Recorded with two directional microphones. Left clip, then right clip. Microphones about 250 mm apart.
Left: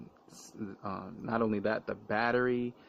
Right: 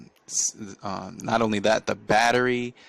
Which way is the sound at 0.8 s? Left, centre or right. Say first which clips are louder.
Right 9 dB; right.